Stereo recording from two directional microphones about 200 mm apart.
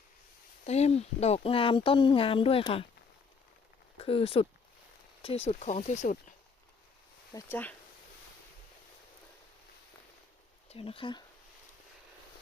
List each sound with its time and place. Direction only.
0.6 s speech: 30° left (ahead or behind)
3.9 s speech: 30° left (ahead or behind)
7.3 s speech: 10° left (ahead or behind)
10.7 s speech: 30° left (ahead or behind)